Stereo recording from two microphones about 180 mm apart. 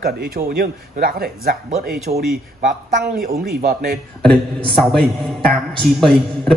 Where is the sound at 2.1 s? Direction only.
40° right (ahead or behind).